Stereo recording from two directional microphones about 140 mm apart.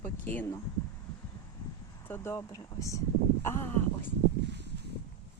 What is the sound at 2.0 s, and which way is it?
Speech, 15° left (ahead or behind).